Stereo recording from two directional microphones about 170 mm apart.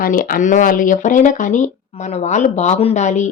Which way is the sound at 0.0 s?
55° left (ahead or behind).